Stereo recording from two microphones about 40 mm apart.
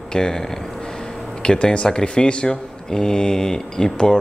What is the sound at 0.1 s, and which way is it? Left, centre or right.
Speech, centre.